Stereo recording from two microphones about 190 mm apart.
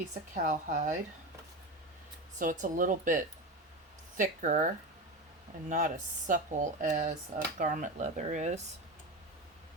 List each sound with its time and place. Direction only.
0.3 s speech: 40° right (ahead or behind)
2.4 s speech: 45° right (ahead or behind)